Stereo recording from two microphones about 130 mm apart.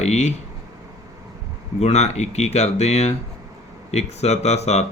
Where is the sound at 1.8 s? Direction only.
55° left (ahead or behind).